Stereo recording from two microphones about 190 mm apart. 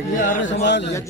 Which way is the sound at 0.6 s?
65° left (ahead or behind).